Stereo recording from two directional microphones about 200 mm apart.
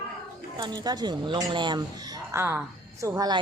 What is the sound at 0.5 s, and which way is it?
A woman's voice, 20° right (ahead or behind).